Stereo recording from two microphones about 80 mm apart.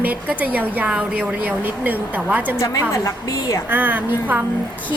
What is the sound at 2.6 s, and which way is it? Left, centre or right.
A woman's voice, left.